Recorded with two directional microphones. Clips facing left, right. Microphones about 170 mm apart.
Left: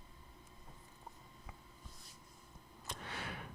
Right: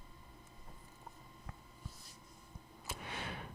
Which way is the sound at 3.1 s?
25° right (ahead or behind).